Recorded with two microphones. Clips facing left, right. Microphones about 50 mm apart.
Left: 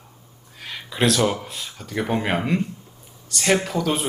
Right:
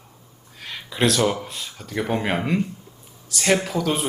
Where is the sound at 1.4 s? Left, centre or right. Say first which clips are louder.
Even; centre.